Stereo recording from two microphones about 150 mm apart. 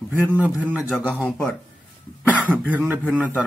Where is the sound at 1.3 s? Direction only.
5° left (ahead or behind).